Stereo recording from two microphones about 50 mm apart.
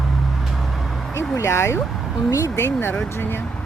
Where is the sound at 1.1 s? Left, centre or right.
Left.